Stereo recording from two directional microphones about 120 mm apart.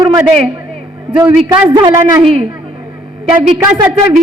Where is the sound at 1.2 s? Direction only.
35° right (ahead or behind).